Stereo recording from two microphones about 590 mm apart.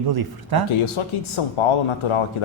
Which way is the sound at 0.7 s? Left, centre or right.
Left.